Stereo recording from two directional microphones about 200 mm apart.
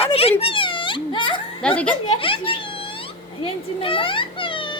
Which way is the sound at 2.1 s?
25° left (ahead or behind).